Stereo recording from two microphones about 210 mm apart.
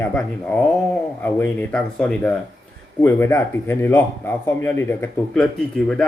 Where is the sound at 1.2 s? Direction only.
10° left (ahead or behind).